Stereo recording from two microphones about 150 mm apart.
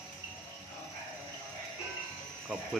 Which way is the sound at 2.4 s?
5° right (ahead or behind).